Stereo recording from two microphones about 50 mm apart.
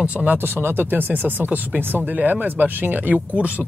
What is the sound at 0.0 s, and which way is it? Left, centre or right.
Speech, right.